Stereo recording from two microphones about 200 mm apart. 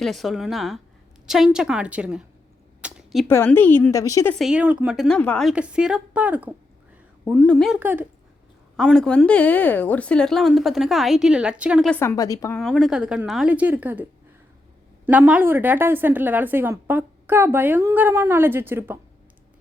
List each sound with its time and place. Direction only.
0.0 s a woman's voice: centre (ahead or behind)
2.8 s a sound: 5° right (ahead or behind)
3.2 s speech: 10° left (ahead or behind)
4.4 s a woman's voice: 5° right (ahead or behind)
7.3 s a woman's voice: 5° left (ahead or behind)
7.8 s a woman's voice: 10° right (ahead or behind)
8.7 s a woman's voice: centre (ahead or behind)
11.9 s speech: 15° left (ahead or behind)
12.5 s a woman's voice: centre (ahead or behind)